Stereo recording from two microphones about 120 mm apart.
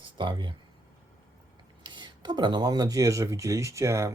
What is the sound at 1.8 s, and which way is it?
Speech, 40° right (ahead or behind).